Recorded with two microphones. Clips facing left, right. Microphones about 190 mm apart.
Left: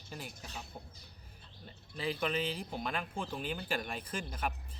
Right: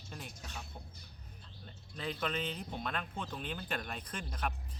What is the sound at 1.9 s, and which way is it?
Speech, 5° left (ahead or behind).